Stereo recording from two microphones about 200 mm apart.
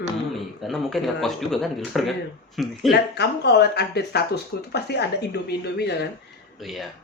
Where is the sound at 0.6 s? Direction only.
Centre (ahead or behind).